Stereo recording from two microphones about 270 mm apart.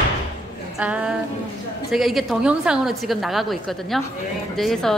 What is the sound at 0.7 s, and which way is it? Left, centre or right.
A woman's voice, centre.